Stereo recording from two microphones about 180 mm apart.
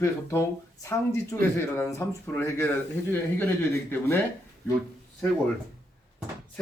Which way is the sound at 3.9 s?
15° left (ahead or behind).